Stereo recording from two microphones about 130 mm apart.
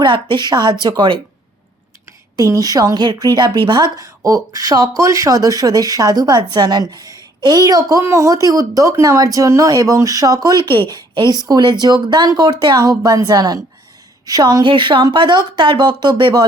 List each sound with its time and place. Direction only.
0.0 s a woman's voice: 35° right (ahead or behind)
2.3 s a woman's voice: 25° right (ahead or behind)